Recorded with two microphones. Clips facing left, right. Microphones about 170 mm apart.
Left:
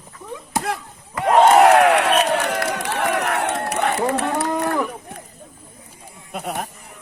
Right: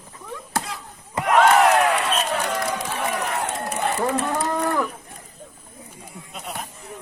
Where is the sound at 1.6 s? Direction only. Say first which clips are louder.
Left 5 dB; 70° left (ahead or behind).